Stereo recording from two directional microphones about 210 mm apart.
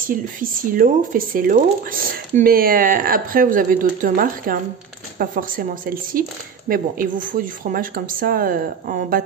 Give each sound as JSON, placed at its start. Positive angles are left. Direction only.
{"t": 0.1, "sound": "speech", "side_deg": -40}